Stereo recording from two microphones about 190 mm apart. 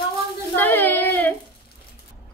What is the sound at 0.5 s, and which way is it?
Speech, 10° left (ahead or behind).